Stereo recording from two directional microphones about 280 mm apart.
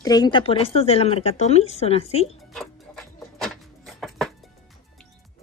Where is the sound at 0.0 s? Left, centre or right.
Centre.